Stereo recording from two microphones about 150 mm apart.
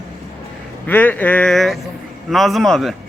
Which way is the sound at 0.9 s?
10° left (ahead or behind).